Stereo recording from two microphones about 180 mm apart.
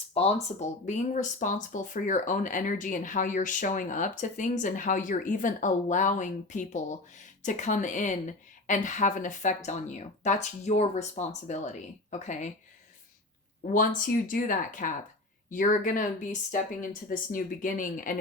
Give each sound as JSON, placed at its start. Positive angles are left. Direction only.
{"t": 0.1, "sound": "speech", "side_deg": 35}
{"t": 13.7, "sound": "speech", "side_deg": 45}